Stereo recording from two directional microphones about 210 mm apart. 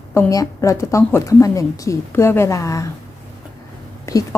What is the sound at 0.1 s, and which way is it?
A woman's voice, 15° left (ahead or behind).